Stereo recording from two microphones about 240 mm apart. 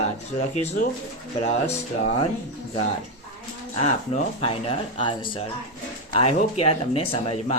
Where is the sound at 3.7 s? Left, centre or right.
Left.